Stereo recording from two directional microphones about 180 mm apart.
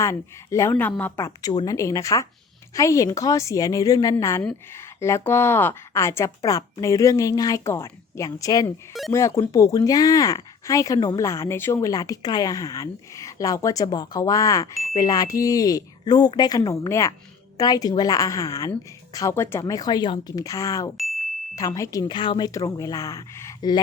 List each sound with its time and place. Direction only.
0.0 s a woman's voice: 15° left (ahead or behind)
21.0 s ding: centre (ahead or behind)
21.5 s speech: 20° left (ahead or behind)